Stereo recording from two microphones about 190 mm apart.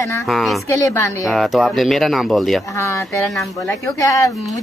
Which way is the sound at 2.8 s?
15° left (ahead or behind).